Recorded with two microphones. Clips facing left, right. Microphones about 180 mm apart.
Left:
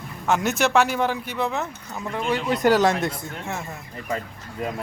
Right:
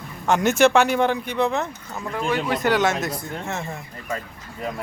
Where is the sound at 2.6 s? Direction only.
35° left (ahead or behind).